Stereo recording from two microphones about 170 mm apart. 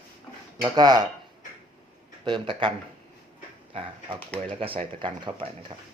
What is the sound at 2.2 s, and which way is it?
Speech, 30° right (ahead or behind).